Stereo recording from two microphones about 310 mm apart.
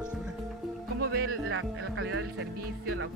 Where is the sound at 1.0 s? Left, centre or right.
Right.